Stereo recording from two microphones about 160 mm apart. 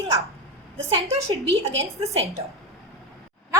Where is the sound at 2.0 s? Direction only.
40° right (ahead or behind).